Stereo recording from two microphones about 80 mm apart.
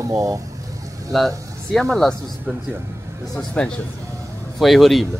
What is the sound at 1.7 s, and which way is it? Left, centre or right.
Speech, centre.